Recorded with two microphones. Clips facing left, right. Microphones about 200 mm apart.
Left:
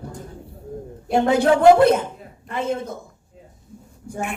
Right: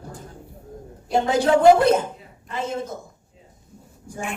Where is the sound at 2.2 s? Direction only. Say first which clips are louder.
Left 3 dB; 55° left (ahead or behind).